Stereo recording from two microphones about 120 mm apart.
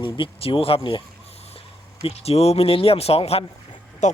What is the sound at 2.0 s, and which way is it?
Speech, 60° left (ahead or behind).